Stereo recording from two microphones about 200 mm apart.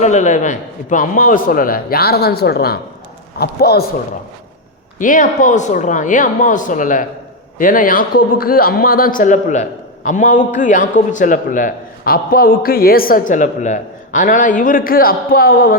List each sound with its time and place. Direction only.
0.0 s a man's voice: 35° left (ahead or behind)
4.9 s a man's voice: 40° left (ahead or behind)